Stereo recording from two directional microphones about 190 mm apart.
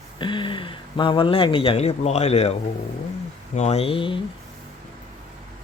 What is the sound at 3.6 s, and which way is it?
Speech, 35° left (ahead or behind).